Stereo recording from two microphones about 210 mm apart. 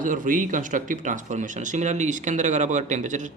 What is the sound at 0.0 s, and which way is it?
Speech, 40° right (ahead or behind).